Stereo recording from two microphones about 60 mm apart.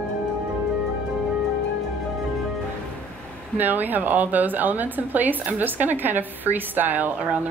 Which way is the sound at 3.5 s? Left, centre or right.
Right.